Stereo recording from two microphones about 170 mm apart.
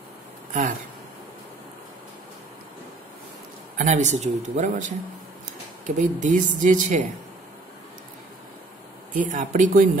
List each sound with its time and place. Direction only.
0.5 s speech: 50° right (ahead or behind)
3.7 s speech: 45° right (ahead or behind)
9.1 s speech: 50° right (ahead or behind)